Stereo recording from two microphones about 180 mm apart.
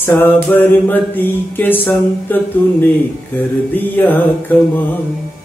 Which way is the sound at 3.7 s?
10° left (ahead or behind).